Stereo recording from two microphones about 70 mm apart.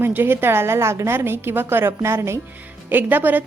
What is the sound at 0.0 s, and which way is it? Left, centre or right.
A woman's voice, right.